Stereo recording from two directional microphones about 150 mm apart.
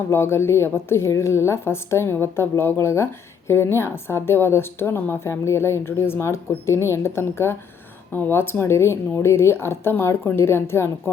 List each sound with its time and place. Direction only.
0.1 s a woman's voice: 15° left (ahead or behind)